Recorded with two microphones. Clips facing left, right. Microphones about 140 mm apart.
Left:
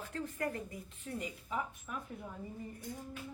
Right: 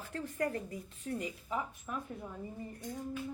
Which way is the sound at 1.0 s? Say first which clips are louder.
Right 3 dB; 35° right (ahead or behind).